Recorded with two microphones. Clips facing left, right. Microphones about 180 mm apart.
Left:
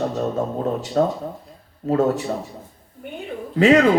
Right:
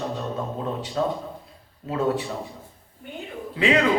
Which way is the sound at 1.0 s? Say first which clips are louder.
Left 5 dB; 45° left (ahead or behind).